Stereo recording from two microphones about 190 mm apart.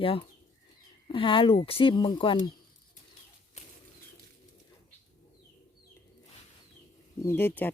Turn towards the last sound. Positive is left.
turn(degrees=10)  # may be behind; listen again after turning